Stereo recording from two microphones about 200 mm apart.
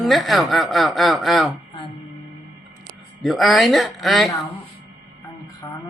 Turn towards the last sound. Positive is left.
turn(degrees=15)  # may be behind; listen again after turning